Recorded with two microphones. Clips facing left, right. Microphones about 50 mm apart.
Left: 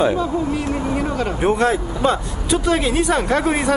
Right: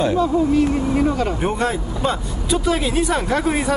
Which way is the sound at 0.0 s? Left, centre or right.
Centre.